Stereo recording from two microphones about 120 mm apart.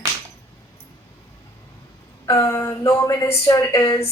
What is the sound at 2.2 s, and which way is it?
Speech, 30° left (ahead or behind).